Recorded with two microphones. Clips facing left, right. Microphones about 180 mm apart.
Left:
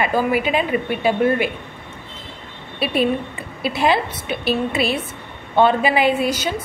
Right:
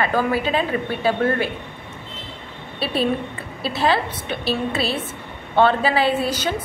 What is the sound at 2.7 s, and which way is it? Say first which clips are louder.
A woman's voice: left 2 dB; 15° left (ahead or behind).